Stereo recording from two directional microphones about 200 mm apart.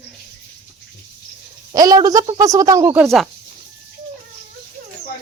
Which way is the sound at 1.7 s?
20° right (ahead or behind).